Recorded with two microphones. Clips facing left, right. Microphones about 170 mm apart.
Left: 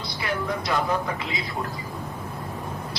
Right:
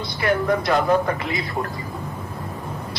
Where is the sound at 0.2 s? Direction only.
55° right (ahead or behind).